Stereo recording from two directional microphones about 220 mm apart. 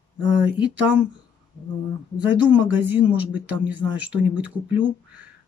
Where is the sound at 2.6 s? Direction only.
60° right (ahead or behind).